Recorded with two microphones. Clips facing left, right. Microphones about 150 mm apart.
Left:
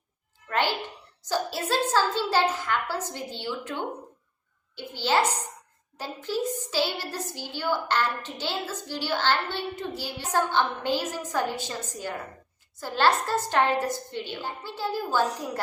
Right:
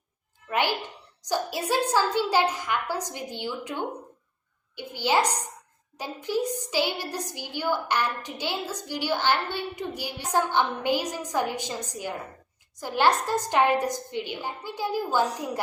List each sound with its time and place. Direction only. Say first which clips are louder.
0.4 s a woman's voice: even; 15° right (ahead or behind)